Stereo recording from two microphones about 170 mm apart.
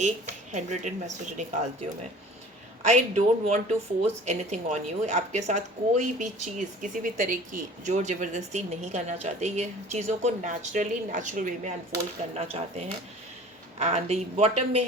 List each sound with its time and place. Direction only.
0.0 s a woman's voice: 45° right (ahead or behind)
2.8 s a woman's voice: 40° right (ahead or behind)